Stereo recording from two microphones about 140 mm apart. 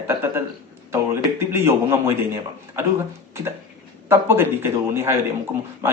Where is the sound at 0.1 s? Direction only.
15° right (ahead or behind).